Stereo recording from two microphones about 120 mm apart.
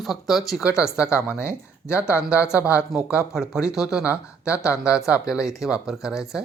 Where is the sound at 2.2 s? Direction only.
10° right (ahead or behind).